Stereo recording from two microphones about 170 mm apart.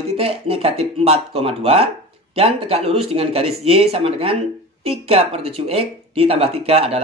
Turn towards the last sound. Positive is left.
turn(degrees=-35)  # may be behind; listen again after turning